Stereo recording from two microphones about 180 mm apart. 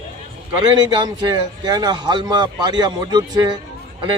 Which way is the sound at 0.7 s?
25° right (ahead or behind).